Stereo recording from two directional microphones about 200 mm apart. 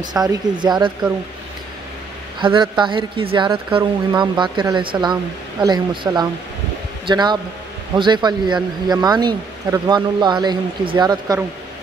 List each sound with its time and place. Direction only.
0.0 s speech: 20° right (ahead or behind)
2.4 s speech: 25° right (ahead or behind)